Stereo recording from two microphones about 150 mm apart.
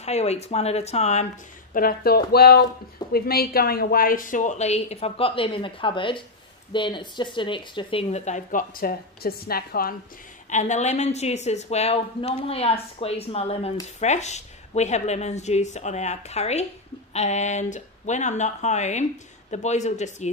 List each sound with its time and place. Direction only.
0.0 s speech: 45° left (ahead or behind)
1.7 s speech: 75° left (ahead or behind)
10.5 s speech: 50° left (ahead or behind)